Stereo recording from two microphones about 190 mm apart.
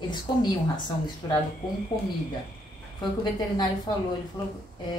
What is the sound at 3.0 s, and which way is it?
Speech, 20° left (ahead or behind).